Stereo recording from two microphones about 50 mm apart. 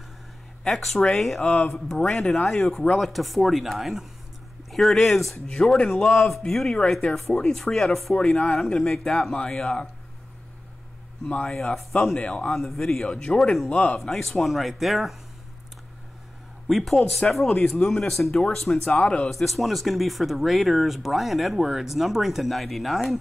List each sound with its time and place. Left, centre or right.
0.7 s speech: centre
11.4 s speech: centre
12.2 s a man's voice: centre
12.4 s speech: centre
13.1 s a man's voice: left
13.4 s speech: centre
13.7 s a man's voice: left
13.9 s speech: centre
16.6 s speech: centre
17.6 s speech: centre
19.3 s speech: centre